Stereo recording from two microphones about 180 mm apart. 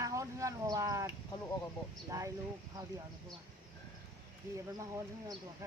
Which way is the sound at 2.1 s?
20° right (ahead or behind).